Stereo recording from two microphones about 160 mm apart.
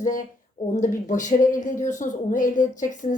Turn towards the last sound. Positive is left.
turn(degrees=50)  # may be behind; listen again after turning